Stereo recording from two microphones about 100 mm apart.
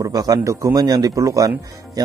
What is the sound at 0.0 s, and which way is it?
Speech, 40° right (ahead or behind).